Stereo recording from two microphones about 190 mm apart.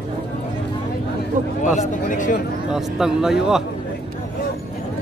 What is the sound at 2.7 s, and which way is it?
Speech, centre (ahead or behind).